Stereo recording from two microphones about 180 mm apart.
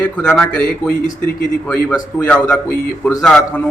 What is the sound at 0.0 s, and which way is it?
Speech, 5° left (ahead or behind).